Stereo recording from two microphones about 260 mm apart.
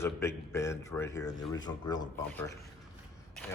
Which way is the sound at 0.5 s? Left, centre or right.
Centre.